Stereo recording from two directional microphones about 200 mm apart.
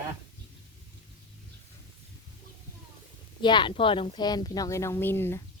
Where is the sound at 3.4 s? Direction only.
25° left (ahead or behind).